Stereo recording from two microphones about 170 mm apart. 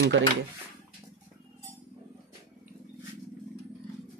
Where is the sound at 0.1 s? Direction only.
90° right.